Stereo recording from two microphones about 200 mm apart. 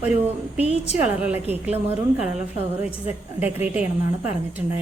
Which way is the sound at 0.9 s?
10° right (ahead or behind).